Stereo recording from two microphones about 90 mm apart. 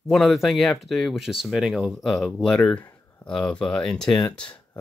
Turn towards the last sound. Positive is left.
turn(degrees=10)  # may be behind; listen again after turning